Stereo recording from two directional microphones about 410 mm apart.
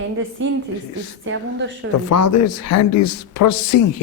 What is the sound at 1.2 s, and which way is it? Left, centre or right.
Speech, right.